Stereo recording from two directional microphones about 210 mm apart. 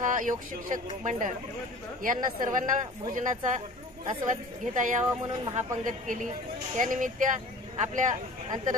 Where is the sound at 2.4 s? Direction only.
40° right (ahead or behind).